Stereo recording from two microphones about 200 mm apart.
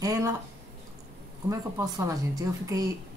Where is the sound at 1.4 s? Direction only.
15° right (ahead or behind).